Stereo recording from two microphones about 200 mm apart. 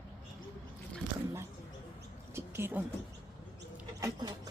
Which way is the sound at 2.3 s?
10° right (ahead or behind).